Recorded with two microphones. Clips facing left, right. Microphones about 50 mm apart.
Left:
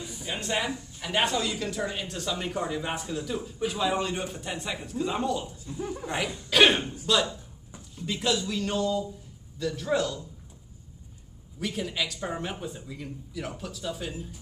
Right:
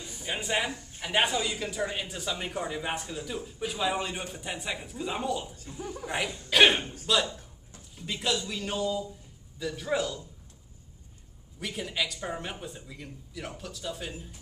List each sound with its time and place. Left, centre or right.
0.2 s a man's voice: centre
11.6 s a man's voice: centre